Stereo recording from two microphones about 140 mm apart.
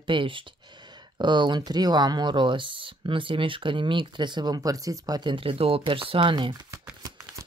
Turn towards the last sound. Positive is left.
turn(degrees=-25)  # may be behind; listen again after turning